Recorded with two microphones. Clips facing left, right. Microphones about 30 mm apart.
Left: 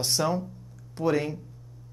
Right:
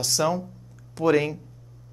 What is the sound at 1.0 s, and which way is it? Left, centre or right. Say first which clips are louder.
Speech: right 5 dB; right.